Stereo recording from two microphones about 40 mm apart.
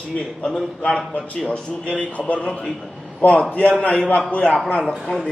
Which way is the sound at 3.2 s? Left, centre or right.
Left.